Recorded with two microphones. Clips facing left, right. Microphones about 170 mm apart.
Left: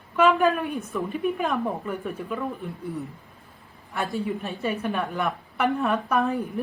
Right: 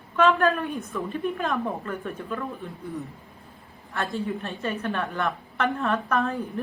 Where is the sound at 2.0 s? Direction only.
5° left (ahead or behind).